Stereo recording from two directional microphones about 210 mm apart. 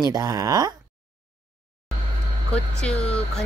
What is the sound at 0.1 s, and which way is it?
Speech, 15° right (ahead or behind).